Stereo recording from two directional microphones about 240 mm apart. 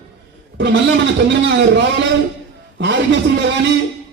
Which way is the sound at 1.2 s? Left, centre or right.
Right.